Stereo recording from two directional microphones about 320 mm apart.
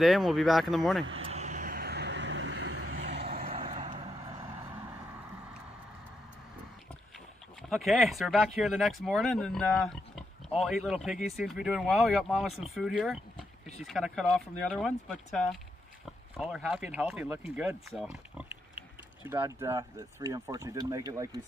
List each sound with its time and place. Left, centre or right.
0.0 s speech: centre
1.0 s vehicle: centre
3.4 s vehicle: centre
7.7 s speech: centre